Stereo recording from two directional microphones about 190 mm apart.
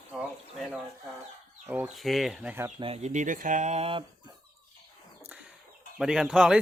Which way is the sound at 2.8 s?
30° right (ahead or behind).